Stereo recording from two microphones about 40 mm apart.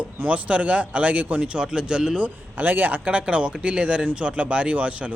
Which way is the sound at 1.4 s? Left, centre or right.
Right.